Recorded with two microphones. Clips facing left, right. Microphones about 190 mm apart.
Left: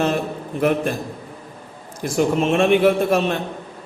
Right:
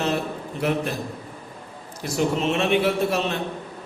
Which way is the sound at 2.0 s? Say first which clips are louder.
Left 4 dB; 50° left (ahead or behind).